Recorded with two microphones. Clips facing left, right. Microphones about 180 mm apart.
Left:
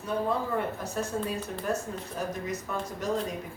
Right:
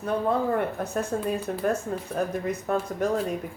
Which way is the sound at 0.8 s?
55° right (ahead or behind).